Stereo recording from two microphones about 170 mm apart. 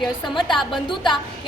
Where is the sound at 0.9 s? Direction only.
30° left (ahead or behind).